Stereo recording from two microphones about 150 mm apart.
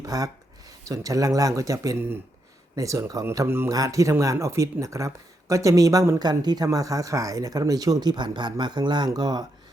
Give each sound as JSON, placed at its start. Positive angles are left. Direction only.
{"t": 0.0, "sound": "speech", "side_deg": -25}